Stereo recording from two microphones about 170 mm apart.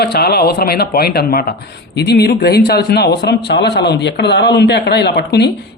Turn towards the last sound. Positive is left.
turn(degrees=75)  # may be behind; listen again after turning